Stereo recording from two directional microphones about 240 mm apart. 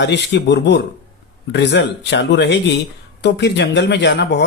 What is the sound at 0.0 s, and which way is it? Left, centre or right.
Speech, left.